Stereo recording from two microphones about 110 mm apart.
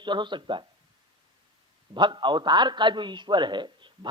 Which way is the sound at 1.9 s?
45° right (ahead or behind).